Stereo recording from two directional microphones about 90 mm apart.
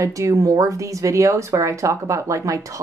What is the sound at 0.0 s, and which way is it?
Speech, 35° right (ahead or behind).